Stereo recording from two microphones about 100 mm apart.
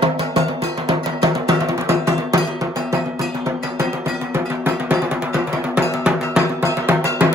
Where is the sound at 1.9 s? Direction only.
30° right (ahead or behind).